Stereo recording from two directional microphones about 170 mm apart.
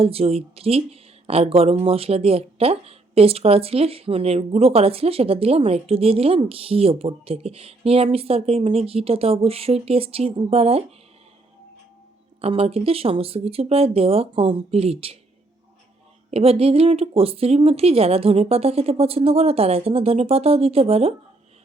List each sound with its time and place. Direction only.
0.0 s speech: 35° right (ahead or behind)
12.4 s speech: 35° right (ahead or behind)
16.3 s speech: 35° right (ahead or behind)